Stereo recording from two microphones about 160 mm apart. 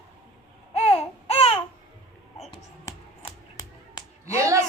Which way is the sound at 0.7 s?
35° left (ahead or behind).